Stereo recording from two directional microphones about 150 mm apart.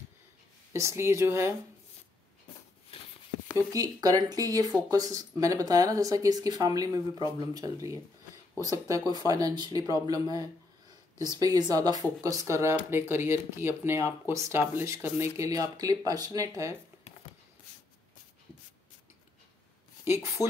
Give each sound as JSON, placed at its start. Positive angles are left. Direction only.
{"t": 0.7, "sound": "speech", "side_deg": -20}
{"t": 2.9, "sound": "a sound", "side_deg": 40}
{"t": 3.7, "sound": "speech", "side_deg": -25}